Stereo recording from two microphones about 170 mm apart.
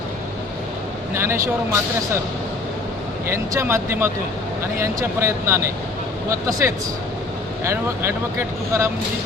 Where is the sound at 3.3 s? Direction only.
15° right (ahead or behind).